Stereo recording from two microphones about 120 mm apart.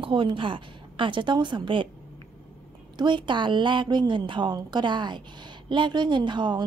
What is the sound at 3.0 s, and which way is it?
A woman's voice, 40° right (ahead or behind).